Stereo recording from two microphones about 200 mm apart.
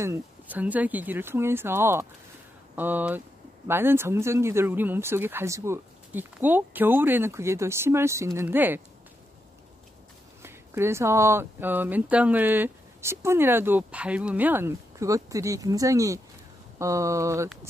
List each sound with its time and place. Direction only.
0.0 s speech: 10° right (ahead or behind)
10.4 s speech: 10° right (ahead or behind)